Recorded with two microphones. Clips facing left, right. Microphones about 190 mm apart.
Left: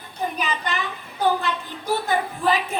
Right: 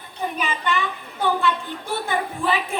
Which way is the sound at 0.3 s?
40° left (ahead or behind).